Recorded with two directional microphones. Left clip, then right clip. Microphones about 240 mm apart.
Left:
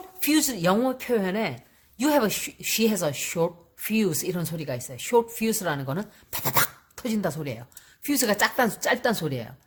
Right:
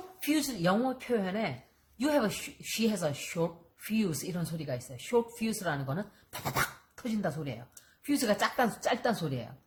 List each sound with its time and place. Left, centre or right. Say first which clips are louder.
0.3 s speech: left 7 dB; left